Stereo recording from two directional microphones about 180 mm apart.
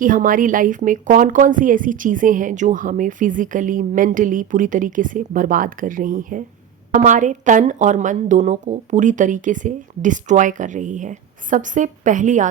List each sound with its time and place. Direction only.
0.0 s speech: 50° right (ahead or behind)